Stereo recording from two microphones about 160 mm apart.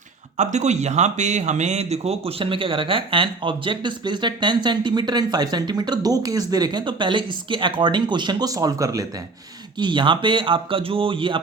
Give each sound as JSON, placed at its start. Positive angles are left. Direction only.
{"t": 0.3, "sound": "speech", "side_deg": -45}